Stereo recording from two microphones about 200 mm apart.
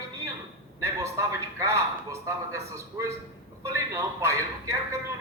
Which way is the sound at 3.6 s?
15° right (ahead or behind).